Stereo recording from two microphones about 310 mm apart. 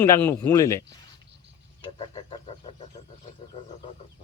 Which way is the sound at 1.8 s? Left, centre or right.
Centre.